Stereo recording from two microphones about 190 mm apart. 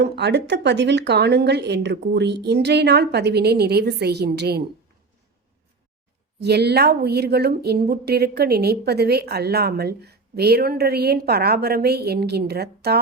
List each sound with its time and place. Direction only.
0.0 s a woman's voice: 65° right (ahead or behind)
6.4 s a woman's voice: 60° right (ahead or behind)